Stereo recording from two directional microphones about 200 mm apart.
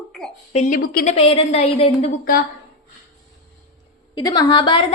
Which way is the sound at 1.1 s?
30° left (ahead or behind).